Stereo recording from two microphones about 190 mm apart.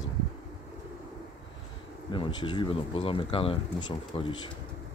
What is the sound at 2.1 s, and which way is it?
Speech, 25° left (ahead or behind).